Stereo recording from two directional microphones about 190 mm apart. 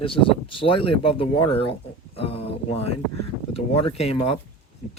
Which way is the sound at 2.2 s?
30° left (ahead or behind).